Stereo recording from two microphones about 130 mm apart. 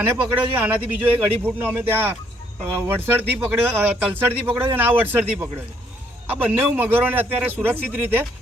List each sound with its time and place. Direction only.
0.0 s a man's voice: 15° right (ahead or behind)